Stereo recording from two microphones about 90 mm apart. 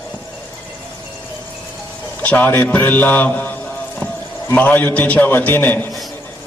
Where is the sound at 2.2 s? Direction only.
20° left (ahead or behind).